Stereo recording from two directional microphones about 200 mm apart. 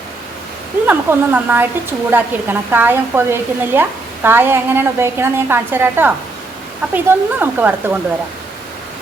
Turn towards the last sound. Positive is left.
turn(degrees=-10)  # may be behind; listen again after turning